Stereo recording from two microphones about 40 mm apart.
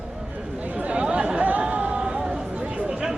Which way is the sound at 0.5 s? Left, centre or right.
Right.